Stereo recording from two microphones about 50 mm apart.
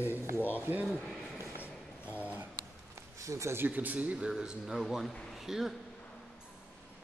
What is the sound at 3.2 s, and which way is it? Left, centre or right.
Speech, right.